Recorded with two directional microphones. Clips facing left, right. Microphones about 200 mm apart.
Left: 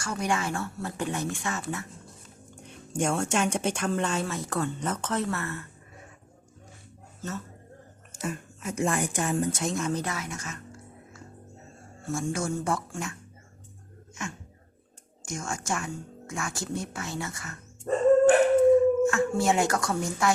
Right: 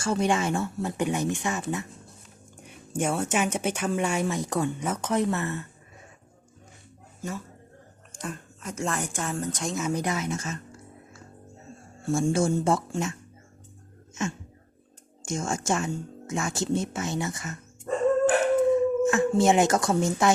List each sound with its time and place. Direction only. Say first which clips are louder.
0.0 s speech: right 5 dB; 25° right (ahead or behind)
2.6 s a woman's voice: even; 5° right (ahead or behind)
7.2 s speech: right 1 dB; 10° right (ahead or behind)
8.2 s a woman's voice: left 2 dB; 5° left (ahead or behind)
9.9 s speech: right 4 dB; 15° right (ahead or behind)
12.0 s speech: right 6 dB; 30° right (ahead or behind)
15.3 s speech: right 5 dB; 25° right (ahead or behind)
17.9 s dog: left 2 dB; 35° left (ahead or behind)
19.0 s speech: right 3 dB; 20° right (ahead or behind)